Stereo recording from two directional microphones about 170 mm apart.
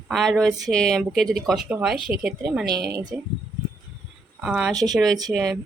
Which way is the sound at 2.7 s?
75° right (ahead or behind).